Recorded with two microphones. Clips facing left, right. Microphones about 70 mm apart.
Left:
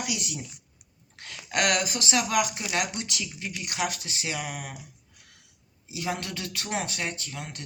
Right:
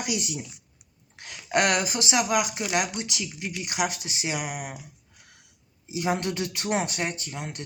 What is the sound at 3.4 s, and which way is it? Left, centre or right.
Speech, centre.